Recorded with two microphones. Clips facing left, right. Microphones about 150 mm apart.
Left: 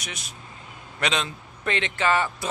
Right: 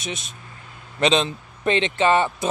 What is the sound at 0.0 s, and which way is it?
Speech, 25° right (ahead or behind).